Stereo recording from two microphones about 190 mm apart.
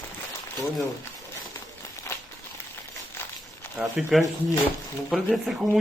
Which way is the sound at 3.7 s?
5° right (ahead or behind).